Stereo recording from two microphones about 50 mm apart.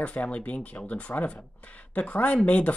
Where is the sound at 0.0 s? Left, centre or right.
Left.